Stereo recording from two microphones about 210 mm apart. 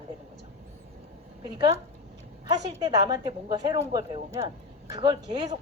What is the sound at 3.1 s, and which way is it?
A woman's voice, 20° right (ahead or behind).